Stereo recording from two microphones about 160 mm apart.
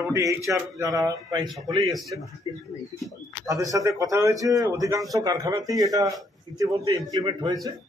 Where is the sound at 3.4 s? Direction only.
20° right (ahead or behind).